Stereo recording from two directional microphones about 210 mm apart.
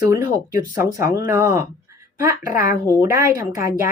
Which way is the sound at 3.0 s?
15° right (ahead or behind).